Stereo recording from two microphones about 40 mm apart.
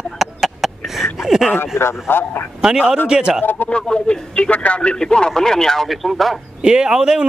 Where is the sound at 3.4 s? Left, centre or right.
Left.